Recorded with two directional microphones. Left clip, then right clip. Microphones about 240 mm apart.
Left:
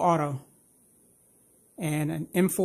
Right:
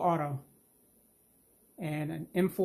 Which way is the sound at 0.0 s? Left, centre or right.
Left.